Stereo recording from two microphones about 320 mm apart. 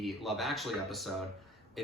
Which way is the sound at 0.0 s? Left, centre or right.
Centre.